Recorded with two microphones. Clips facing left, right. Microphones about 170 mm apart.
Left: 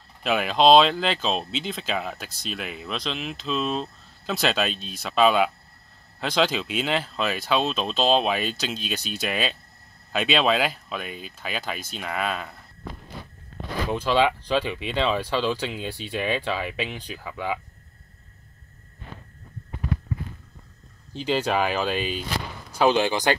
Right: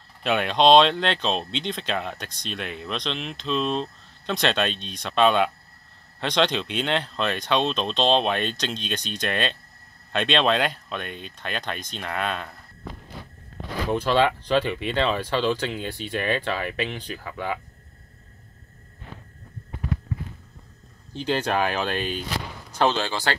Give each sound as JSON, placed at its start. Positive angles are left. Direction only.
{"t": 0.2, "sound": "speech", "side_deg": 0}
{"t": 14.0, "sound": "speech", "side_deg": 10}
{"t": 21.1, "sound": "speech", "side_deg": 5}